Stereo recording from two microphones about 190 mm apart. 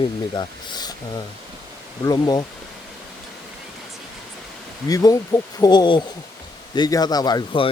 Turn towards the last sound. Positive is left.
turn(degrees=25)  # may be behind; listen again after turning